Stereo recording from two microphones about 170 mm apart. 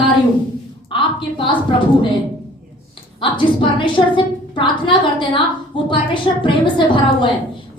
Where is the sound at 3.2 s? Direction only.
30° left (ahead or behind).